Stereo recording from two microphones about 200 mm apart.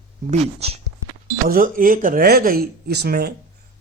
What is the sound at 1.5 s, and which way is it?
A man's voice, 45° right (ahead or behind).